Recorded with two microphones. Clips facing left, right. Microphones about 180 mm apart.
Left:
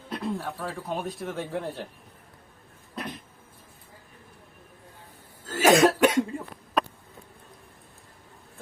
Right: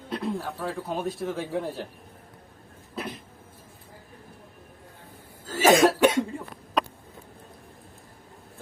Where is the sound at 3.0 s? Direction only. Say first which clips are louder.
Right 1 dB; 5° right (ahead or behind).